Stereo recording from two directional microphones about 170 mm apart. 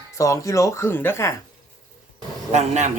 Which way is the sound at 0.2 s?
20° left (ahead or behind).